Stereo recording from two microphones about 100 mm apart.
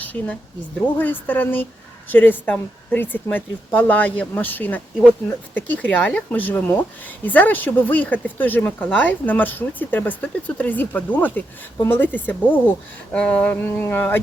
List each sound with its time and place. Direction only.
0.0 s a woman's voice: 15° left (ahead or behind)